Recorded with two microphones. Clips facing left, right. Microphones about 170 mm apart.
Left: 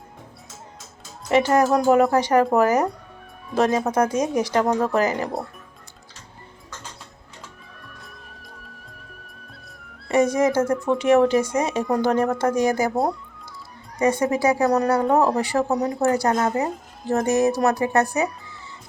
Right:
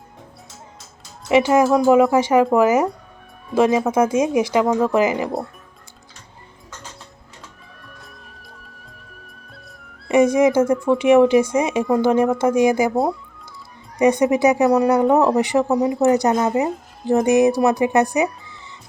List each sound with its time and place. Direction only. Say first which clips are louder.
1.3 s speech: right 3 dB; 10° right (ahead or behind)
8.6 s music: left 1 dB; centre (ahead or behind)
10.2 s speech: right 4 dB; 10° right (ahead or behind)
12.9 s speech: right 3 dB; centre (ahead or behind)
14.0 s speech: right 5 dB; 15° right (ahead or behind)